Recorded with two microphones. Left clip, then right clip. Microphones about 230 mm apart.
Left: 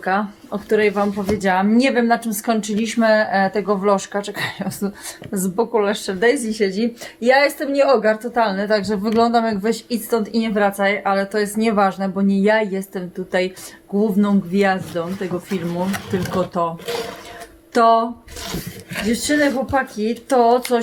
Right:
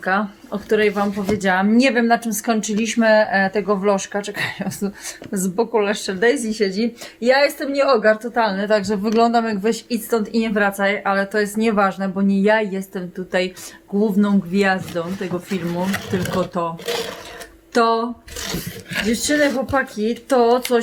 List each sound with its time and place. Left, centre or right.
0.0 s speech: centre
17.7 s speech: centre
19.0 s speech: centre